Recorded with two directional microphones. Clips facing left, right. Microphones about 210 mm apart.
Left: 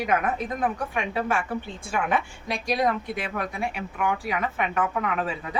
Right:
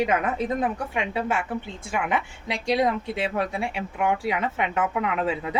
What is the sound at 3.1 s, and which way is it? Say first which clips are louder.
Speech: right 4 dB; 30° right (ahead or behind).